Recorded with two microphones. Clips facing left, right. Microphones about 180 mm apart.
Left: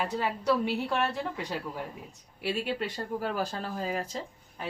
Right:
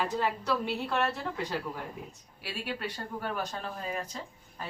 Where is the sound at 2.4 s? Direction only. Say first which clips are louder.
Left 5 dB; 25° left (ahead or behind).